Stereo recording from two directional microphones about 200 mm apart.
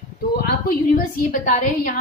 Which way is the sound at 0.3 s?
55° left (ahead or behind).